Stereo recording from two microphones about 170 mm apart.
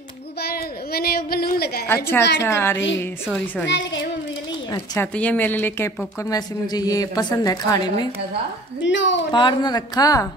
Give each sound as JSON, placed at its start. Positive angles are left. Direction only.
{"t": 0.4, "sound": "a sound", "side_deg": 65}
{"t": 2.4, "sound": "a woman's voice", "side_deg": 15}
{"t": 3.6, "sound": "a woman's voice", "side_deg": 90}
{"t": 4.7, "sound": "a woman's voice", "side_deg": 10}
{"t": 8.8, "sound": "a woman's voice", "side_deg": 90}
{"t": 9.3, "sound": "a woman's voice", "side_deg": 25}